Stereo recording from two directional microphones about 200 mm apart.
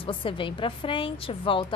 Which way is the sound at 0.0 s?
25° left (ahead or behind).